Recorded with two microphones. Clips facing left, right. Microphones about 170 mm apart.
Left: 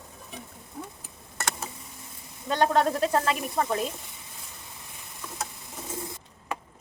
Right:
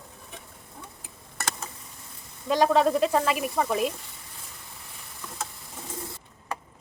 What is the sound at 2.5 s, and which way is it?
Speech, 5° right (ahead or behind).